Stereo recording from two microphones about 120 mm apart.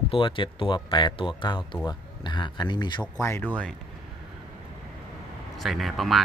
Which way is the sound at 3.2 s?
20° left (ahead or behind).